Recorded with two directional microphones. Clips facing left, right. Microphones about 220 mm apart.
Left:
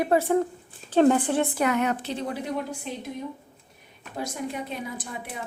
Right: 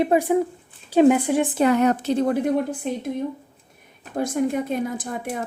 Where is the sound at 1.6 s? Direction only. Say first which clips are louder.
Right 6 dB; 35° right (ahead or behind).